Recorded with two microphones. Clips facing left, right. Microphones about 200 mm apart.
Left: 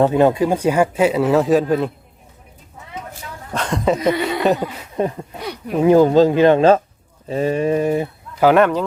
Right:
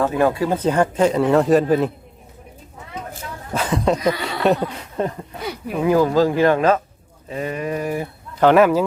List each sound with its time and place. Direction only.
0.0 s speech: 25° left (ahead or behind); by 1.9 s centre (ahead or behind)
3.5 s speech: 5° right (ahead or behind)
5.0 s speech: 15° left (ahead or behind)
5.4 s a sound: centre (ahead or behind)
5.8 s speech: 25° left (ahead or behind)
8.4 s speech: centre (ahead or behind)